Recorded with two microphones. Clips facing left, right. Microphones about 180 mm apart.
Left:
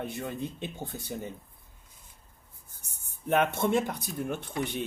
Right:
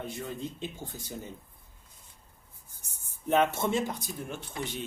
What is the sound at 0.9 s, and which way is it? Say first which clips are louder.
Speech: left 3 dB; 60° left (ahead or behind).